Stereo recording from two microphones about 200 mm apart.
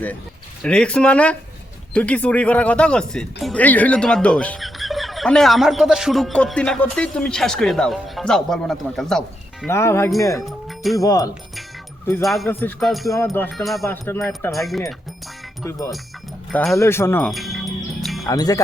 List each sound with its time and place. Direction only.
0.6 s speech: 5° left (ahead or behind)
9.7 s music: 15° left (ahead or behind)
10.4 s music: centre (ahead or behind)
10.9 s music: 15° left (ahead or behind)
12.2 s speech: centre (ahead or behind)
13.1 s music: 15° left (ahead or behind)
13.5 s speech: centre (ahead or behind)
16.5 s speech: centre (ahead or behind)
16.7 s music: 15° left (ahead or behind)
18.3 s music: 20° left (ahead or behind)